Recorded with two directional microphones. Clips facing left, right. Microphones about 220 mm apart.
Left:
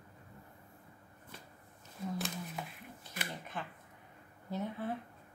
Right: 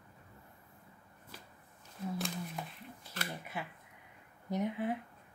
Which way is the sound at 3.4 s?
10° right (ahead or behind).